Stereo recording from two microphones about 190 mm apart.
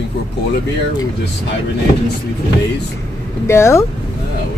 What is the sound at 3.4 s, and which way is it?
Speech, 15° left (ahead or behind).